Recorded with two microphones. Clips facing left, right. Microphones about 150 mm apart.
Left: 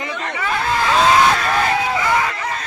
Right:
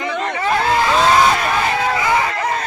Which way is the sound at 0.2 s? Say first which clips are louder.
Right 4 dB; 35° right (ahead or behind).